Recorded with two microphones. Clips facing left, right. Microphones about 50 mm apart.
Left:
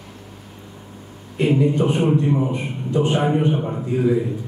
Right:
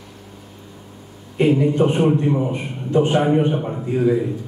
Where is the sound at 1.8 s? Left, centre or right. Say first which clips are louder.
Right 2 dB; right.